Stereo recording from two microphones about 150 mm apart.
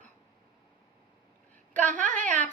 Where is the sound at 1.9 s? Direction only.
55° right (ahead or behind).